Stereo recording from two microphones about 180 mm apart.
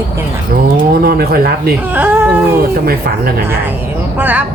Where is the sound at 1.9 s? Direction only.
10° right (ahead or behind).